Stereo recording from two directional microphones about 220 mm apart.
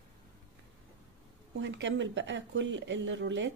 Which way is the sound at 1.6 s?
55° right (ahead or behind).